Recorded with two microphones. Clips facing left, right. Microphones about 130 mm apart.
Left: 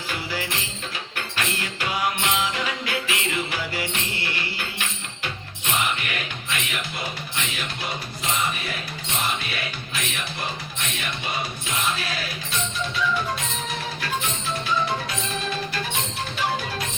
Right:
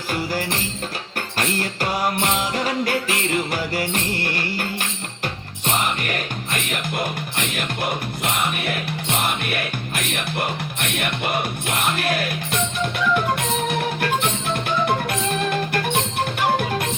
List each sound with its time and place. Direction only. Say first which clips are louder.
0.1 s music: right 6 dB; 45° right (ahead or behind)